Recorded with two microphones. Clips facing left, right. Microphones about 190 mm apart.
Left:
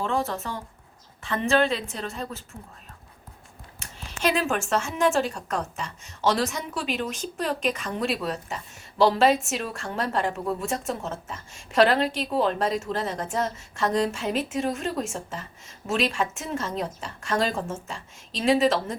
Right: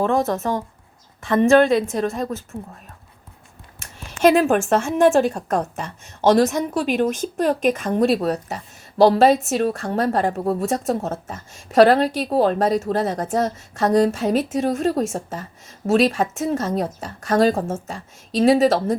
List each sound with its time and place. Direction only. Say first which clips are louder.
0.0 s speech: right 8 dB; 45° right (ahead or behind)
3.8 s a woman's voice: right 11 dB; 50° right (ahead or behind)